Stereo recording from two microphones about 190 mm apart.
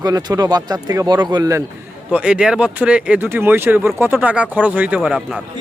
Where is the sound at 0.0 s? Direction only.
20° right (ahead or behind).